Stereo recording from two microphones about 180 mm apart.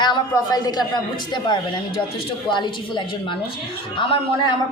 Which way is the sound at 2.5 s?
25° left (ahead or behind).